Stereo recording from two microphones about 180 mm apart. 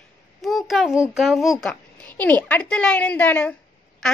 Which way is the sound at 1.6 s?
5° left (ahead or behind).